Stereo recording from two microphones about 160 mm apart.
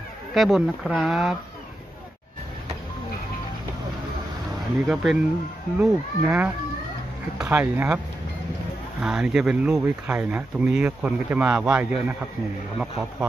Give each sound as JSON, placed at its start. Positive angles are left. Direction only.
{"t": 0.3, "sound": "speech", "side_deg": 0}
{"t": 4.8, "sound": "speech", "side_deg": -5}
{"t": 9.0, "sound": "speech", "side_deg": -5}